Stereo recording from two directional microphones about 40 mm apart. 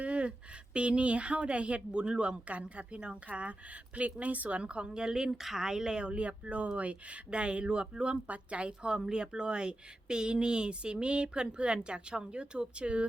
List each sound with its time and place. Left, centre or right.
0.0 s speech: right